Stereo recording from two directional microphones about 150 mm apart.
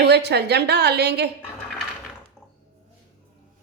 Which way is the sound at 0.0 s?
90° right.